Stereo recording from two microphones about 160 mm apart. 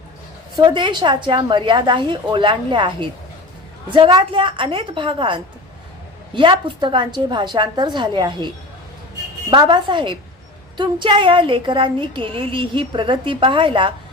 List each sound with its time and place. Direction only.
0.5 s a woman's voice: 30° right (ahead or behind)